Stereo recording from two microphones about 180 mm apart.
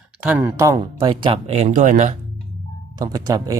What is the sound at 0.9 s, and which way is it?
Speech, 30° right (ahead or behind).